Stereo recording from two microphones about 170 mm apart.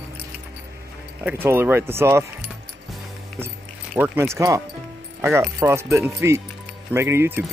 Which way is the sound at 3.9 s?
15° right (ahead or behind).